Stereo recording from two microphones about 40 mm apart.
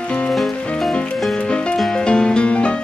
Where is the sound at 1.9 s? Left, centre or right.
Left.